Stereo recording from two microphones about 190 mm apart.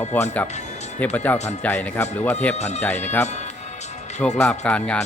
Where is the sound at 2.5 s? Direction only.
35° left (ahead or behind).